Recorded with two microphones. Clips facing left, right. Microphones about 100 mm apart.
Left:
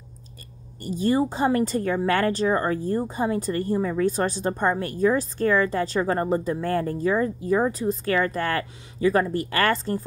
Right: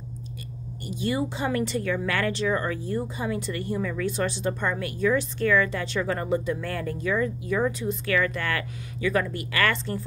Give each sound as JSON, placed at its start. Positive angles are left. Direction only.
{"t": 0.8, "sound": "a woman's voice", "side_deg": 40}